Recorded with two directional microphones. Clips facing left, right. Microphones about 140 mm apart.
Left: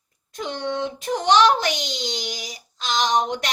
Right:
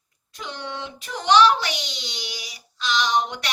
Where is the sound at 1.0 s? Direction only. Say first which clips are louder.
Even; 45° left (ahead or behind).